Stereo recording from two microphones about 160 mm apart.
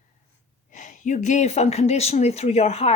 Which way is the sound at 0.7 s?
50° left (ahead or behind).